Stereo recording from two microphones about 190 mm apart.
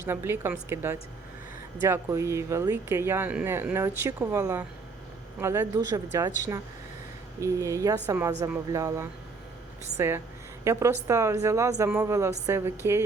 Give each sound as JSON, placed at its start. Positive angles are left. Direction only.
{"t": 0.1, "sound": "speech", "side_deg": -10}
{"t": 7.4, "sound": "speech", "side_deg": -15}
{"t": 10.6, "sound": "a woman's voice", "side_deg": -15}